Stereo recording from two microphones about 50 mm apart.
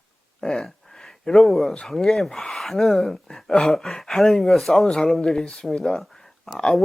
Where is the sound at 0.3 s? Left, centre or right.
Centre.